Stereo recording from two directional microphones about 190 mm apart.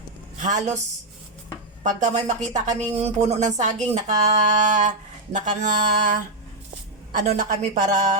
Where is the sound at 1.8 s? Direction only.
40° right (ahead or behind).